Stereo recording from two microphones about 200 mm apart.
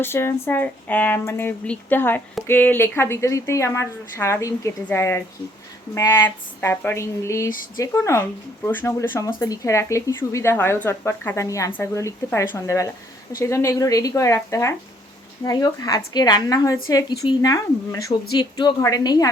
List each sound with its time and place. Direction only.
0.0 s a woman's voice: 10° left (ahead or behind)